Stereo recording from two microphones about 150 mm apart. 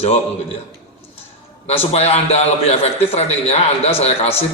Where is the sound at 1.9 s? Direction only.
45° left (ahead or behind).